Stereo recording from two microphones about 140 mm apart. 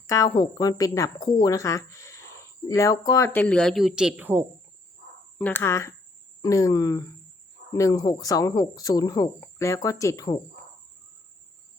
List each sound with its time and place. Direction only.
0.1 s speech: 25° left (ahead or behind)
3.4 s a man's voice: 5° left (ahead or behind); by 4.4 s 15° right (ahead or behind)
5.4 s speech: 15° left (ahead or behind)